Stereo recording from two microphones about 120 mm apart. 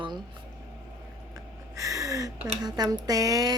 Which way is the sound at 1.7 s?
30° right (ahead or behind).